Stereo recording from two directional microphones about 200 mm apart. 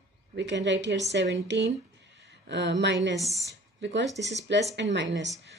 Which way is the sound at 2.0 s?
60° right (ahead or behind).